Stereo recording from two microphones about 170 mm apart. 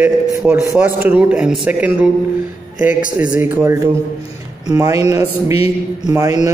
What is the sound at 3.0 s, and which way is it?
Speech, 55° left (ahead or behind).